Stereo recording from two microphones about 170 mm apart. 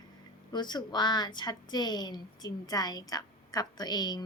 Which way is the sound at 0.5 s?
25° left (ahead or behind).